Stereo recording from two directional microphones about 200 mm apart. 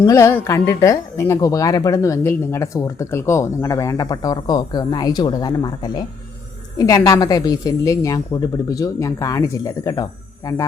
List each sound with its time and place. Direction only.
0.0 s speech: 15° left (ahead or behind)